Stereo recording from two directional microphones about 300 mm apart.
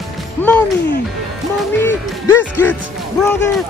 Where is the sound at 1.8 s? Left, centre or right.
Centre.